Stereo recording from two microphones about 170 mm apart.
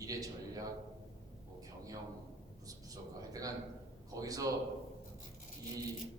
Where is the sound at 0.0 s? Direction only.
20° right (ahead or behind).